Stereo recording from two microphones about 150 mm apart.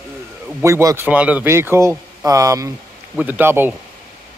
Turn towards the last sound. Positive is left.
turn(degrees=-15)  # may be behind; listen again after turning